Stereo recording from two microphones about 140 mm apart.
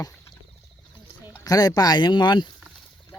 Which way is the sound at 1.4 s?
25° left (ahead or behind).